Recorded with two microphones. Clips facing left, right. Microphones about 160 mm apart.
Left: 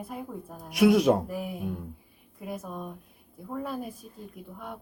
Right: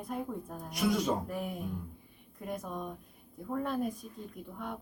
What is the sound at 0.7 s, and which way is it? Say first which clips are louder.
Speech: left 10 dB; 70° left (ahead or behind).